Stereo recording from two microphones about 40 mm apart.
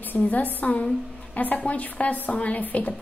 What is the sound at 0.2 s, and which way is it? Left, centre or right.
A woman's voice, left.